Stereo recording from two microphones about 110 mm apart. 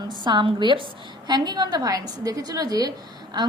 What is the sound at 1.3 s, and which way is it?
A woman's voice, 40° right (ahead or behind).